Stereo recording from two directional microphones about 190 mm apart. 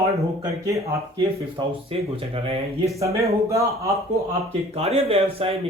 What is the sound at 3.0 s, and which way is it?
Speech, 15° right (ahead or behind).